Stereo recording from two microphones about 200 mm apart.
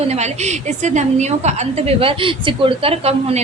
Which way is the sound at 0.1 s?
35° right (ahead or behind).